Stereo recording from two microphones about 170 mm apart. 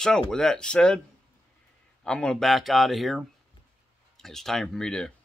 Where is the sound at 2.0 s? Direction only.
5° left (ahead or behind).